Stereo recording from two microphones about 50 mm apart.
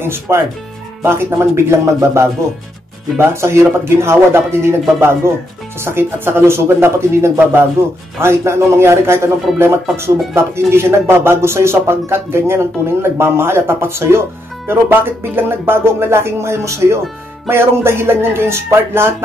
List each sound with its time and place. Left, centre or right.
0.0 s speech: right
1.5 s speech: right
5.8 s speech: right
17.5 s speech: right